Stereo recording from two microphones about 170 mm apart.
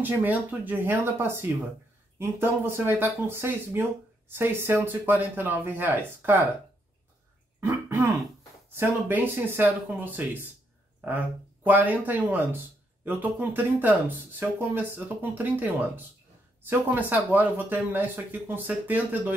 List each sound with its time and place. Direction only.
0.0 s speech: 10° right (ahead or behind)
7.6 s throat clearing: 15° right (ahead or behind)
8.7 s speech: 10° right (ahead or behind)